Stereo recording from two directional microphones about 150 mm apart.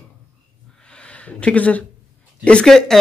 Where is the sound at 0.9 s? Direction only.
10° left (ahead or behind).